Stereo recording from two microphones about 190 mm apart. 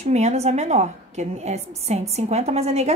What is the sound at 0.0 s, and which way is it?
A woman's voice, 35° right (ahead or behind).